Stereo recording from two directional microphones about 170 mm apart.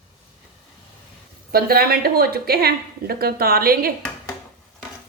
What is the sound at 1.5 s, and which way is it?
A woman's voice, 65° right (ahead or behind).